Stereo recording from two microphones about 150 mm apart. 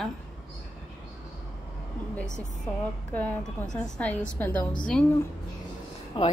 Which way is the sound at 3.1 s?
10° left (ahead or behind).